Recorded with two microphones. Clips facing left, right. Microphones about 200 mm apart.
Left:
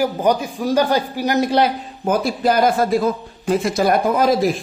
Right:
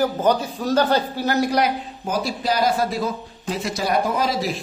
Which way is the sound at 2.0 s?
55° left (ahead or behind).